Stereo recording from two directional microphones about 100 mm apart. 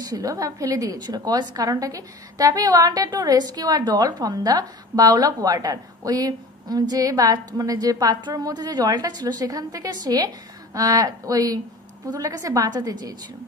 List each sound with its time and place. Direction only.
0.0 s a woman's voice: 40° right (ahead or behind)